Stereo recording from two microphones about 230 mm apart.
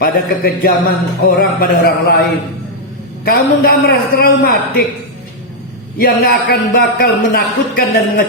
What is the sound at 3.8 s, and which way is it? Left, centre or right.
Speech, left.